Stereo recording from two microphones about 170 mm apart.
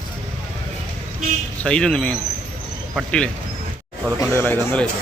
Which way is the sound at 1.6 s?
5° left (ahead or behind).